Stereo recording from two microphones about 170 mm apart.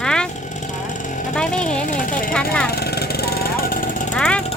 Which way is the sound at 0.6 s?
45° left (ahead or behind).